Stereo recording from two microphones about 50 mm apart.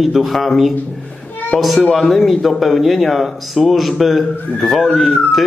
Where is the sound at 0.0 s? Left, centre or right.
Centre.